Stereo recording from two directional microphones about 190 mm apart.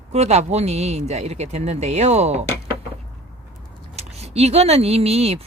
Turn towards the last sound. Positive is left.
turn(degrees=-30)  # may be behind; listen again after turning